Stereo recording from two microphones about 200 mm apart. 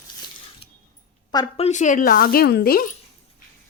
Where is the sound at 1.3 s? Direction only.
25° left (ahead or behind); by 2.9 s 50° left (ahead or behind).